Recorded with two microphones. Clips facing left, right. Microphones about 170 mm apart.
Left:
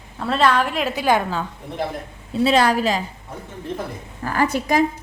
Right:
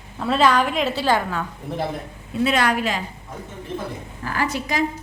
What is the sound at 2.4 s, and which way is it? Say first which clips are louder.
Laughter: left 4 dB; 30° left (ahead or behind).